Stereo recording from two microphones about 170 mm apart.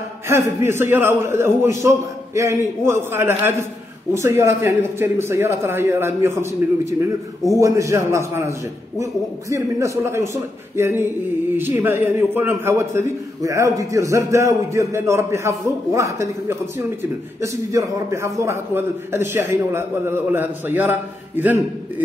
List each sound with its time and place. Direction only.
0.3 s a man's voice: 15° right (ahead or behind)